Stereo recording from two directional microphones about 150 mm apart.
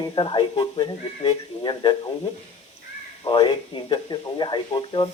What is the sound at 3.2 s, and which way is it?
Speech, 35° left (ahead or behind).